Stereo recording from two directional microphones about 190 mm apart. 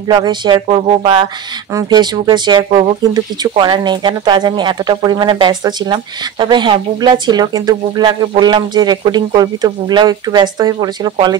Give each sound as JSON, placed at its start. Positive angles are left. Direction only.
{"t": 0.1, "sound": "speech", "side_deg": -25}